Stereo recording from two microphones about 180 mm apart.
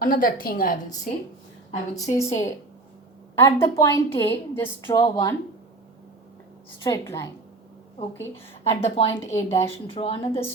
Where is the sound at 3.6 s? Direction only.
15° left (ahead or behind).